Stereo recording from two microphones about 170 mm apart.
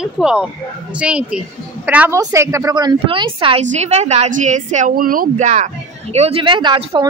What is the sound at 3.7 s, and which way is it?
A woman's voice, 40° right (ahead or behind).